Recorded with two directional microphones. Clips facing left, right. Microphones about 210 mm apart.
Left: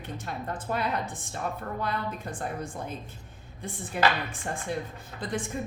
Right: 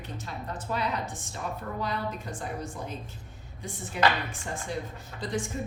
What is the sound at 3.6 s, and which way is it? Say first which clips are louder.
Speech: even; 55° left (ahead or behind).